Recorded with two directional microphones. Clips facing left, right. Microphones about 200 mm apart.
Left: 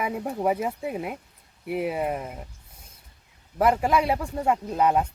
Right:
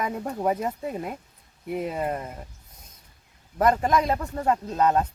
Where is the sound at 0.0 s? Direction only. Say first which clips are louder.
Left 1 dB; 5° left (ahead or behind).